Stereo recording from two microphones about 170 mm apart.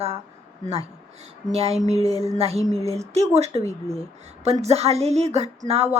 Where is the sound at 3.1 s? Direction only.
40° right (ahead or behind).